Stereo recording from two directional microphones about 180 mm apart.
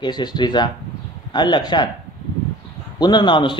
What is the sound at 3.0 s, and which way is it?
Speech, 25° left (ahead or behind).